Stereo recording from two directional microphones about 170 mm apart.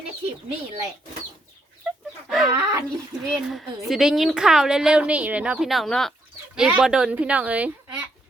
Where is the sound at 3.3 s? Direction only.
Centre (ahead or behind).